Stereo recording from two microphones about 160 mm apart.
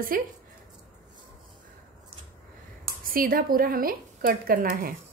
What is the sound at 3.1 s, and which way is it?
Speech, 65° right (ahead or behind).